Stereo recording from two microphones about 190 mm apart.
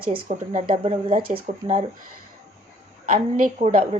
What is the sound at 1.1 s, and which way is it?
Speech, 50° right (ahead or behind).